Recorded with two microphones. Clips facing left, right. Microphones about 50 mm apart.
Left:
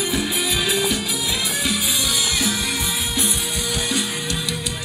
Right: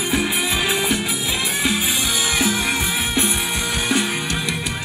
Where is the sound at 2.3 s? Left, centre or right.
Right.